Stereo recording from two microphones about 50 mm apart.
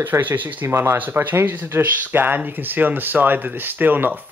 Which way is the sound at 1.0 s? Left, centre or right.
Right.